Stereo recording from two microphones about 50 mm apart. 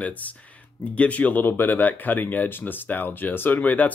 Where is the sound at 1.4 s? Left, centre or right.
Left.